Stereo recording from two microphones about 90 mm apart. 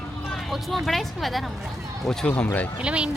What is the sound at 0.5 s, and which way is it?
Speech, centre (ahead or behind).